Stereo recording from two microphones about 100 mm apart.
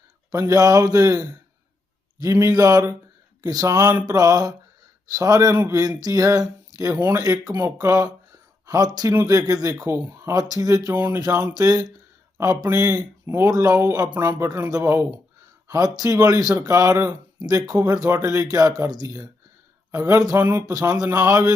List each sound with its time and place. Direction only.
0.3 s speech: 30° right (ahead or behind)
9.9 s speech: 20° right (ahead or behind)
10.3 s speech: 35° right (ahead or behind)
10.9 s speech: 20° right (ahead or behind)
11.5 s speech: 35° right (ahead or behind)
12.4 s speech: 25° right (ahead or behind)